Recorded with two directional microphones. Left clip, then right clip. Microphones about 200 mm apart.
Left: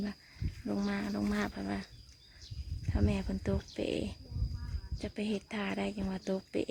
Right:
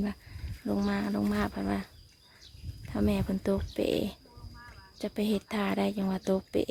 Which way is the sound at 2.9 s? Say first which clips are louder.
Right 5 dB; 15° right (ahead or behind).